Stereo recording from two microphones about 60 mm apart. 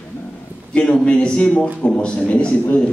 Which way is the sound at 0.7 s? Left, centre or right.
Centre.